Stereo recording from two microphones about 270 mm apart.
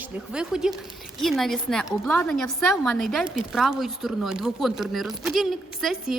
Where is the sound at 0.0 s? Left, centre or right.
Centre.